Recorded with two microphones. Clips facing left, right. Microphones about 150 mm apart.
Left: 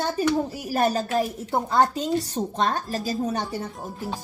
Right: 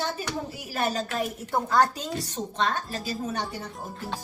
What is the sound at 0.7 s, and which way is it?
Speech, 40° left (ahead or behind).